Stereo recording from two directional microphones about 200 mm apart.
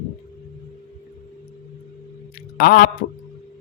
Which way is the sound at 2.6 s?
50° left (ahead or behind).